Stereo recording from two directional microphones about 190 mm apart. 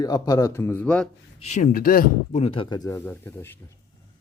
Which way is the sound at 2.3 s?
30° left (ahead or behind).